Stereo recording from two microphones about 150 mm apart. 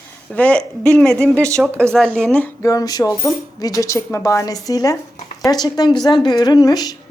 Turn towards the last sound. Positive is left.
turn(degrees=25)  # may be behind; listen again after turning